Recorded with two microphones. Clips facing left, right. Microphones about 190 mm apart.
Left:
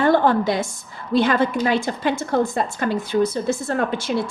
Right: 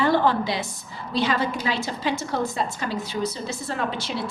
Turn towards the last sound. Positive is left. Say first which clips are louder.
# left 6 dB
turn(degrees=50)  # may be behind; listen again after turning